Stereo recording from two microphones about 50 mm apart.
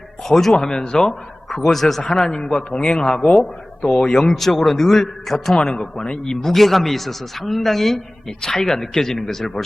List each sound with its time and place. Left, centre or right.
0.3 s a man's voice: centre
3.8 s a man's voice: centre
4.2 s a man's voice: centre